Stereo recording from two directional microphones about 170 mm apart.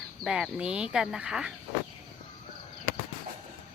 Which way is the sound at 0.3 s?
5° right (ahead or behind).